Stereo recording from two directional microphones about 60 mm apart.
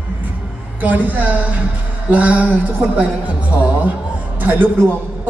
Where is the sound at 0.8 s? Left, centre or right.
Right.